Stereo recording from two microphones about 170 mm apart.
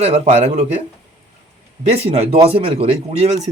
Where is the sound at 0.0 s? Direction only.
40° right (ahead or behind).